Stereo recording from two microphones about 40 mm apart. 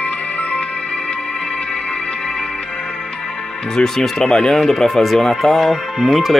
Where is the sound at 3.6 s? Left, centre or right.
Centre.